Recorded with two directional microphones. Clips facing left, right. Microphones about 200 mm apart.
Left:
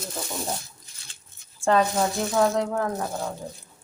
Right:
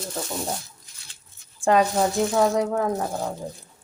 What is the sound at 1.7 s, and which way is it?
Speech, 15° right (ahead or behind).